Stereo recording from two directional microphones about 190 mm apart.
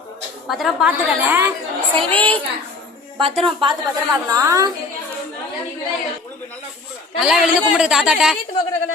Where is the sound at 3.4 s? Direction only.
25° right (ahead or behind).